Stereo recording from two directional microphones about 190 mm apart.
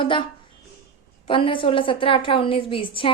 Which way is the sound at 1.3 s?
25° left (ahead or behind).